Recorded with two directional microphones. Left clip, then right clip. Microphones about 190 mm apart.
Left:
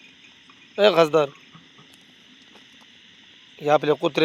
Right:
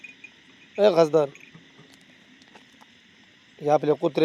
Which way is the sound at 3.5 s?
5° right (ahead or behind).